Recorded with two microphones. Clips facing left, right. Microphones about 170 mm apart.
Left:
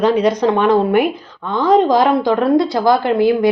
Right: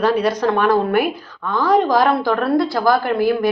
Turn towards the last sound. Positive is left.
turn(degrees=20)  # may be behind; listen again after turning